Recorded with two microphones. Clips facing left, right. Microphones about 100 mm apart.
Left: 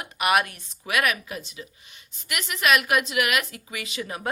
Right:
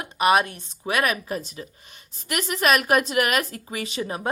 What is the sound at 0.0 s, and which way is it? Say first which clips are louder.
A woman's voice: right 3 dB; 30° right (ahead or behind).